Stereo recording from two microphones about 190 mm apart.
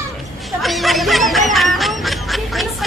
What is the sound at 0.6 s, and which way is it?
Quack, centre (ahead or behind).